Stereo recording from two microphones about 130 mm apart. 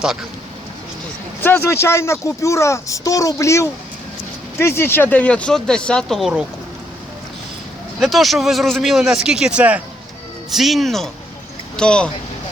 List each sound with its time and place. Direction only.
1.4 s speech: 15° left (ahead or behind); by 6.4 s centre (ahead or behind)
7.9 s speech: centre (ahead or behind)